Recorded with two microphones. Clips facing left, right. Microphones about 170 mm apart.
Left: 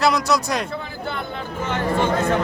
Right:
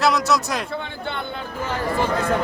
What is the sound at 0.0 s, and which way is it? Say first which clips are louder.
Speech: even; centre (ahead or behind).